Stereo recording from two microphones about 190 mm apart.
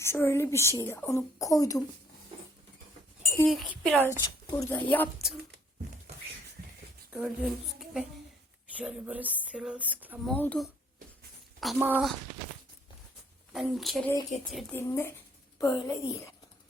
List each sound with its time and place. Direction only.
0.0 s speech: 15° left (ahead or behind)
3.4 s speech: centre (ahead or behind)
5.2 s speech: 5° right (ahead or behind)
7.1 s a woman's voice: 5° right (ahead or behind)
10.2 s speech: 10° left (ahead or behind)
11.6 s speech: 5° right (ahead or behind)
13.5 s speech: centre (ahead or behind)
14.7 s speech: 15° left (ahead or behind)